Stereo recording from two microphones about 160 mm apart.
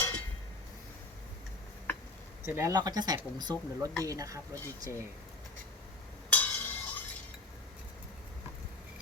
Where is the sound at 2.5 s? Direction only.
20° right (ahead or behind).